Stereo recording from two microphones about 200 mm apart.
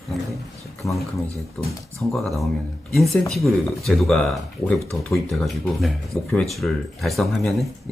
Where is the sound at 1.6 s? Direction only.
Centre (ahead or behind).